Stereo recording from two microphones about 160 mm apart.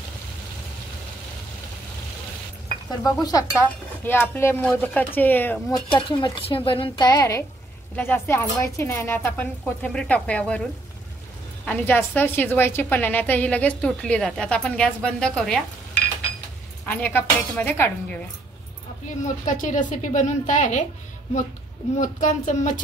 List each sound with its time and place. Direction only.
3.0 s chink: 25° left (ahead or behind)
3.5 s a woman's voice: 10° left (ahead or behind)
5.7 s speech: 25° left (ahead or behind)
7.1 s chink: 20° left (ahead or behind)
7.9 s a woman's voice: 15° left (ahead or behind)
16.8 s a woman's voice: 10° left (ahead or behind)
19.0 s a woman's voice: 50° left (ahead or behind)
22.0 s a woman's voice: 50° left (ahead or behind)